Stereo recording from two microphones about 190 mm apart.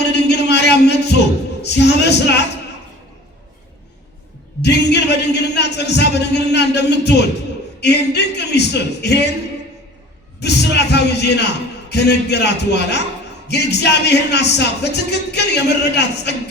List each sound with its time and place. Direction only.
0.0 s a sound: 60° left (ahead or behind)
1.6 s speech: 60° left (ahead or behind)
4.6 s a man's voice: 60° left (ahead or behind)
10.4 s speech: 60° left (ahead or behind)